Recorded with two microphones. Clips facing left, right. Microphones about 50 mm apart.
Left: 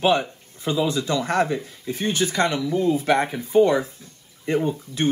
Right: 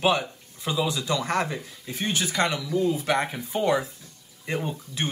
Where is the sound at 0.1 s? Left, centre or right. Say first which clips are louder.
Left 4 dB; left.